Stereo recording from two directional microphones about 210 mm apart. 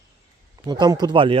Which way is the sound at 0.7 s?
20° right (ahead or behind).